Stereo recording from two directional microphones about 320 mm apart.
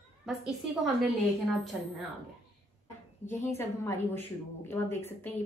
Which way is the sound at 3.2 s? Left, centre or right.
Centre.